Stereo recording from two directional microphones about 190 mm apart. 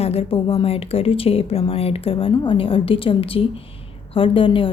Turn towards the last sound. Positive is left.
turn(degrees=25)  # may be behind; listen again after turning